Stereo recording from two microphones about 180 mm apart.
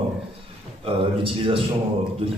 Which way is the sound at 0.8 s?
30° right (ahead or behind).